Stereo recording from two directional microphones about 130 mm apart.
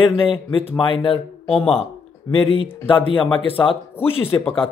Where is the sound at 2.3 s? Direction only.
45° left (ahead or behind).